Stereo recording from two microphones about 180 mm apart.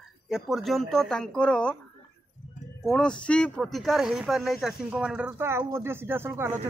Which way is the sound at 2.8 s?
5° left (ahead or behind).